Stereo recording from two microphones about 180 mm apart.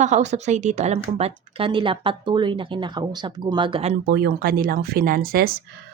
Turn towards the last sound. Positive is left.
turn(degrees=-55)  # may be behind; listen again after turning